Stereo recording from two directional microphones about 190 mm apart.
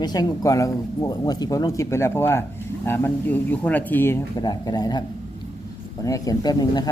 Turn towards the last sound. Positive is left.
turn(degrees=20)  # may be behind; listen again after turning